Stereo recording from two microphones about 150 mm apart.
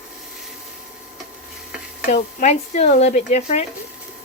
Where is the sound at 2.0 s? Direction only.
55° left (ahead or behind).